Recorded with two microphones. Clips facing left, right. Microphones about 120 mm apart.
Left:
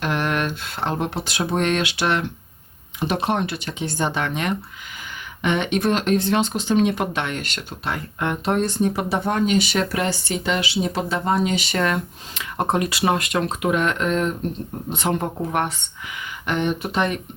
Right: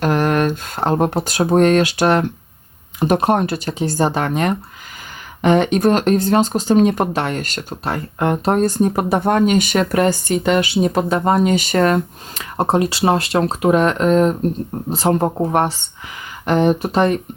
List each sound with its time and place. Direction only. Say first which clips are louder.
0.0 s speech: right 7 dB; 40° right (ahead or behind)